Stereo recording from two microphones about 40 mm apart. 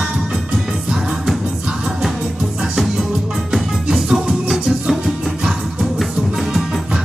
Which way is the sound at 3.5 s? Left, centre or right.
Centre.